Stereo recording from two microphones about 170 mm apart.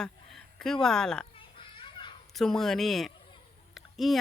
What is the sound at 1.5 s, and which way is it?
Children playing, 30° left (ahead or behind).